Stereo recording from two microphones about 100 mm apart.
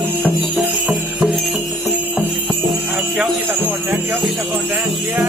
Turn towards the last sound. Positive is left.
turn(degrees=-20)  # may be behind; listen again after turning